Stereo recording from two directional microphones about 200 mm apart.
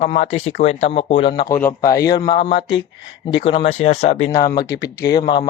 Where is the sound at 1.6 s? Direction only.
15° left (ahead or behind); by 4.4 s 35° left (ahead or behind).